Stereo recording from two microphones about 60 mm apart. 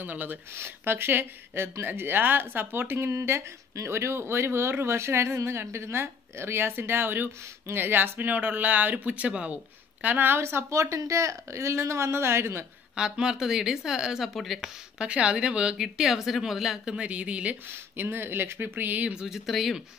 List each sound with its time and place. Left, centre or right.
0.0 s speech: right
0.6 s speech: right
3.1 s speech: right; by 9.6 s centre
10.0 s speech: right
12.9 s a woman's voice: centre
15.0 s a woman's voice: centre
17.6 s speech: right
19.1 s speech: centre